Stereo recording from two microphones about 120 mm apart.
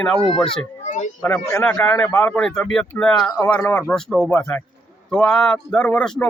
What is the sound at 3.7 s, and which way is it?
Speech, 20° left (ahead or behind).